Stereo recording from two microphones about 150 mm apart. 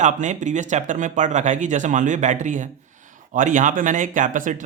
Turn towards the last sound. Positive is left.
turn(degrees=-60)  # may be behind; listen again after turning